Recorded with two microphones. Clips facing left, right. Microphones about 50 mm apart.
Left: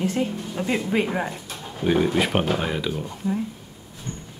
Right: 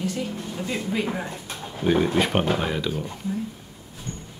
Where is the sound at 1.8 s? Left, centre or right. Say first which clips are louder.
Even; centre.